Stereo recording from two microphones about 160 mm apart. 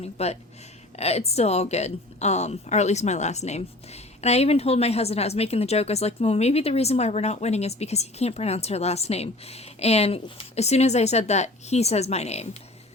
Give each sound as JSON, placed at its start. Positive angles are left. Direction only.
{"t": 0.0, "sound": "a woman's voice", "side_deg": 40}